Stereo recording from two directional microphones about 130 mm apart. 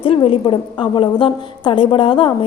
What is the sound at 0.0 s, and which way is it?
A woman's voice, 40° left (ahead or behind).